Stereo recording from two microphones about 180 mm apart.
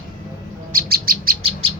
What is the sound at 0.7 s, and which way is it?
Bird, 55° right (ahead or behind).